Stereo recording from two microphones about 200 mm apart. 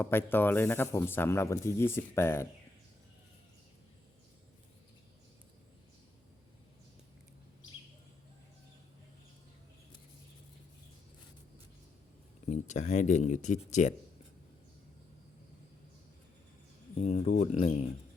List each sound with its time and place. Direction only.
0.0 s speech: 10° left (ahead or behind)
12.5 s speech: 35° left (ahead or behind)
17.0 s speech: 35° left (ahead or behind)